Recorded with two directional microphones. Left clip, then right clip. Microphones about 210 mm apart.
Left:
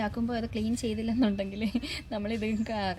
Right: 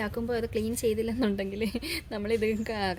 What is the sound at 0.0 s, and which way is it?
A woman's voice, 45° right (ahead or behind).